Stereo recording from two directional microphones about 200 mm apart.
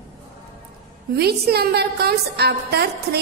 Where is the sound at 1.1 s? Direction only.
50° right (ahead or behind).